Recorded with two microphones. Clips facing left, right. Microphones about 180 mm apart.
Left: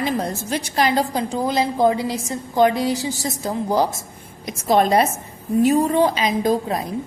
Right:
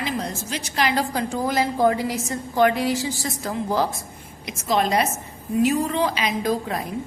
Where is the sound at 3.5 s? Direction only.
20° left (ahead or behind).